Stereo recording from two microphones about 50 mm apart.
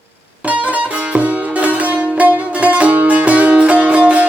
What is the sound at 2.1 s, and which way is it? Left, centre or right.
Music, right.